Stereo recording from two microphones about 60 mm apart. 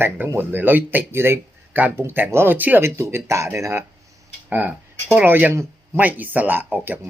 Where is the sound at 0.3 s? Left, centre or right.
Right.